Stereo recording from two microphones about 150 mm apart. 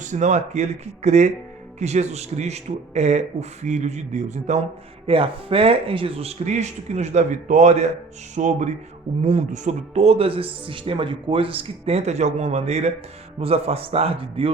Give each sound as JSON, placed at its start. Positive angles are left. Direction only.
{"t": 0.0, "sound": "speech", "side_deg": -50}
{"t": 5.0, "sound": "a man's voice", "side_deg": -40}